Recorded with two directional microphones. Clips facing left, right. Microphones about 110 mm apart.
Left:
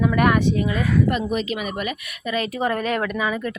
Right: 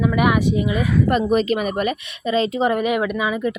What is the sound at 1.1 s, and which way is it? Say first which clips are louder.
Speech: right 6 dB; 40° right (ahead or behind).